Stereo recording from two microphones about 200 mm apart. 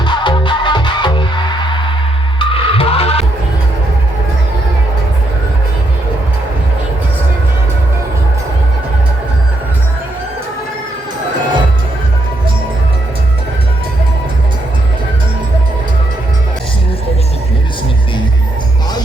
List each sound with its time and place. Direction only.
0.0 s music: 25° left (ahead or behind)